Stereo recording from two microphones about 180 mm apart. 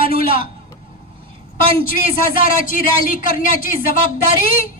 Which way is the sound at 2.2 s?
50° left (ahead or behind).